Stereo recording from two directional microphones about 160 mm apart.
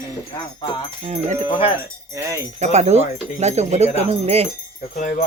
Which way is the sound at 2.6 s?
45° right (ahead or behind).